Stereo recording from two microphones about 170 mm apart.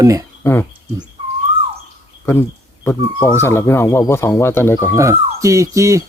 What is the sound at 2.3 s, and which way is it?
A man's voice, 15° left (ahead or behind).